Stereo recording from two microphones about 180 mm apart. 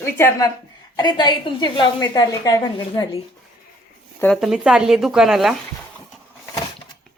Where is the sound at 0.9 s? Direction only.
25° left (ahead or behind).